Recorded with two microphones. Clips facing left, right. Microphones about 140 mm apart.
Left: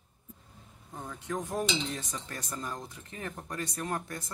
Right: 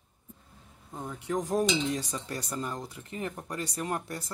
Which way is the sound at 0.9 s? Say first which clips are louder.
Right 4 dB; 15° right (ahead or behind).